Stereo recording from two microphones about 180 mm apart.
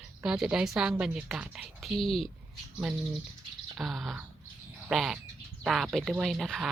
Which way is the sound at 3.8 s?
Centre (ahead or behind).